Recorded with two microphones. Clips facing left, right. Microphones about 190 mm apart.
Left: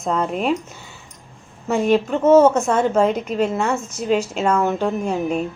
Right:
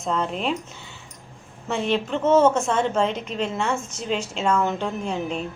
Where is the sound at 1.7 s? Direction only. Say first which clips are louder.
Left 6 dB; 45° left (ahead or behind).